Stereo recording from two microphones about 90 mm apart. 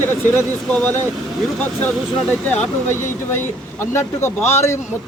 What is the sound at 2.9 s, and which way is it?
Speech, 25° left (ahead or behind).